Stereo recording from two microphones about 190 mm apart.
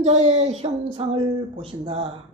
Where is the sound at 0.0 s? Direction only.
35° right (ahead or behind).